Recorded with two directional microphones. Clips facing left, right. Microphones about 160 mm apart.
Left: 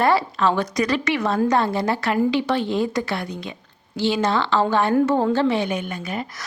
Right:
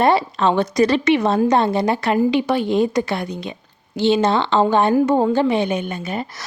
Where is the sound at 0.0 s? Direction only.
20° right (ahead or behind).